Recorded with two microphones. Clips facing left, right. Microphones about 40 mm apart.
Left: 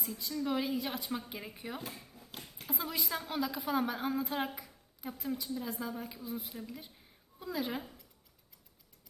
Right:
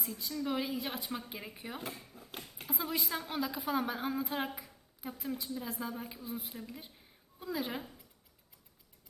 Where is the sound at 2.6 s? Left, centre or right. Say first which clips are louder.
Right 1 dB; centre.